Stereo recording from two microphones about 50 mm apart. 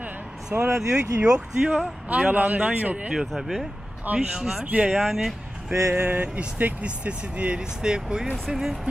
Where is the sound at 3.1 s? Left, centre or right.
Centre.